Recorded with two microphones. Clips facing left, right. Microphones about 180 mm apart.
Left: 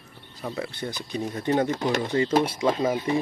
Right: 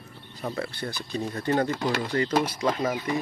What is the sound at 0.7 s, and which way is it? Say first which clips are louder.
Speech: left 1 dB; 20° left (ahead or behind).